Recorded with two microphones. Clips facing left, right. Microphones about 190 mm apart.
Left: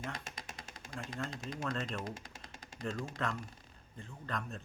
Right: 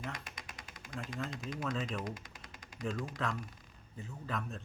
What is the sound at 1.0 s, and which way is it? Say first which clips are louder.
Speech: even; 25° left (ahead or behind).